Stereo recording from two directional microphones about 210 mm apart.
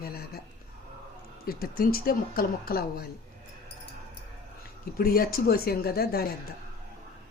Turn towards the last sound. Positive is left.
turn(degrees=50)  # may be behind; listen again after turning